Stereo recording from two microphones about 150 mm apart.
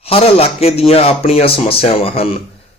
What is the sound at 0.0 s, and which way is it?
A man's voice, 40° left (ahead or behind).